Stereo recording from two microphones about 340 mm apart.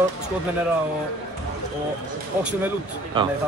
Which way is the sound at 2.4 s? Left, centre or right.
Centre.